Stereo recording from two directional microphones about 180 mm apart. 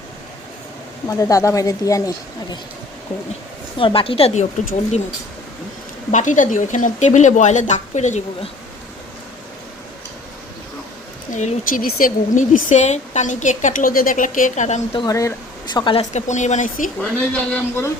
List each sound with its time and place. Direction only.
1.1 s a woman's voice: 20° left (ahead or behind)
3.8 s speech: 30° left (ahead or behind)
6.1 s speech: 45° left (ahead or behind)
11.3 s speech: 45° left (ahead or behind)
14.9 s a woman's voice: 20° left (ahead or behind); by 16.9 s 45° left (ahead or behind)
17.0 s a man's voice: 10° left (ahead or behind)